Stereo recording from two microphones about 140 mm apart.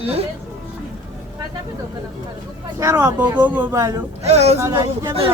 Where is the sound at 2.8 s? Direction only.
20° right (ahead or behind).